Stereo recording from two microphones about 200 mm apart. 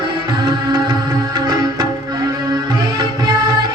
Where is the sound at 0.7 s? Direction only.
20° right (ahead or behind).